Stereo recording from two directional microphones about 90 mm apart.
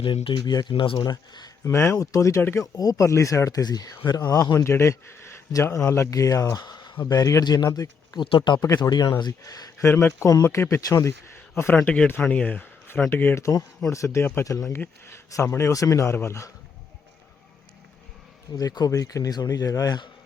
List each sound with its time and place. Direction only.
0.0 s speech: 80° left
0.3 s speech: 50° left (ahead or behind)
0.7 s speech: 75° left (ahead or behind)
1.6 s speech: 30° left (ahead or behind)
2.7 s speech: 40° left (ahead or behind)
7.1 s speech: 40° left (ahead or behind)
8.2 s speech: 60° left (ahead or behind)
8.6 s speech: 40° left (ahead or behind); by 13.4 s 25° left (ahead or behind)
13.4 s speech: 35° left (ahead or behind)
18.5 s speech: 50° left (ahead or behind)